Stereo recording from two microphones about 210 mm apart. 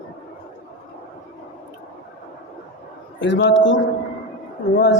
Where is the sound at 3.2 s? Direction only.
60° left (ahead or behind).